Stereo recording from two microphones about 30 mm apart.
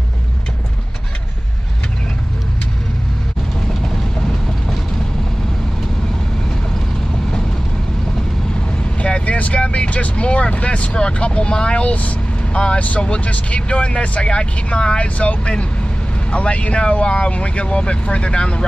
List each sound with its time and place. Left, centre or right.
9.2 s vehicle: left
10.0 s speech: left
11.9 s vehicle: left
12.7 s speech: left
15.0 s speech: left